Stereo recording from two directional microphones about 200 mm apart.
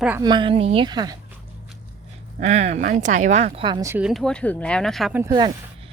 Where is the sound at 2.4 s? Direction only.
35° right (ahead or behind); by 4.1 s 15° right (ahead or behind).